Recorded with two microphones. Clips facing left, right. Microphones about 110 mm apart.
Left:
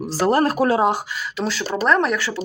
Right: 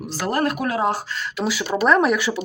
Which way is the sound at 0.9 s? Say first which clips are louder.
Left 1 dB; 15° left (ahead or behind).